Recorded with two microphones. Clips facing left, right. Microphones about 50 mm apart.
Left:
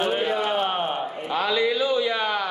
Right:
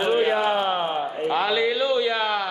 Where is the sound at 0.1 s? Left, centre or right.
Centre.